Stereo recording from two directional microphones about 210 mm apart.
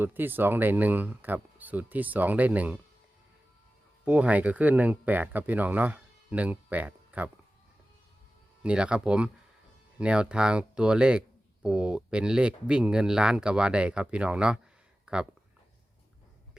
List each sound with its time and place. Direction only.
0.0 s speech: 10° right (ahead or behind)
4.0 s speech: 5° right (ahead or behind)
8.6 s speech: 5° right (ahead or behind)